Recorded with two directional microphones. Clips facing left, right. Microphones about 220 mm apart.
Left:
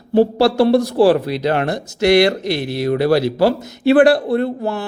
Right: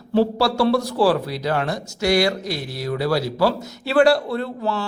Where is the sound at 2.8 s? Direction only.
60° left (ahead or behind).